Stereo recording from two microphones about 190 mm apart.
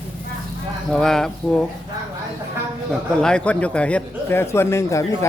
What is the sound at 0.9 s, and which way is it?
Speech, centre (ahead or behind).